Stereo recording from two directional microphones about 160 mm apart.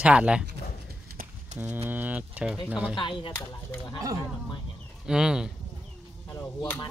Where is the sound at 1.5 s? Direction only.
45° right (ahead or behind).